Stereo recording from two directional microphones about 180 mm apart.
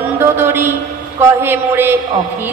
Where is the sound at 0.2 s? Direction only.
15° right (ahead or behind).